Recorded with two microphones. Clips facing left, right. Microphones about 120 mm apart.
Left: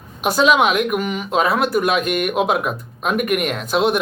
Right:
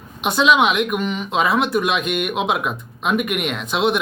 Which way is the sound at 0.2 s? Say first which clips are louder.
Left 1 dB; centre (ahead or behind).